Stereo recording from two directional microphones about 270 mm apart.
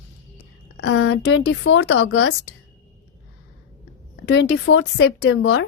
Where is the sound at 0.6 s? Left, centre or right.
Left.